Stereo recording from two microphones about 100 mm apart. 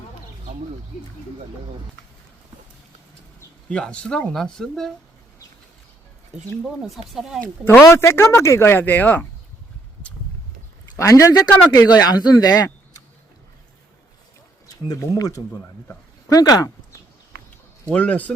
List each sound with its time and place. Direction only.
3.7 s speech: 10° left (ahead or behind)
6.7 s speech: 5° right (ahead or behind)
7.4 s speech: 15° left (ahead or behind)
7.9 s speech: 30° left (ahead or behind)
10.9 s speech: 30° left (ahead or behind)
14.8 s speech: 35° left (ahead or behind)
17.9 s speech: 15° left (ahead or behind)